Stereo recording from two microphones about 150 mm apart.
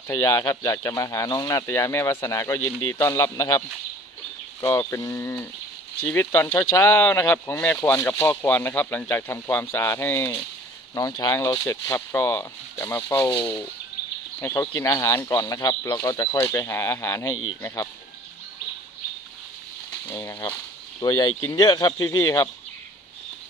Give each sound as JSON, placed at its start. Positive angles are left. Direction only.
{"t": 0.1, "sound": "speech", "side_deg": 15}
{"t": 14.4, "sound": "speech", "side_deg": 20}
{"t": 19.9, "sound": "speech", "side_deg": 15}